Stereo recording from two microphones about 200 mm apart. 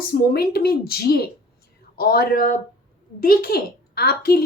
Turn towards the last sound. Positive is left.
turn(degrees=50)  # may be behind; listen again after turning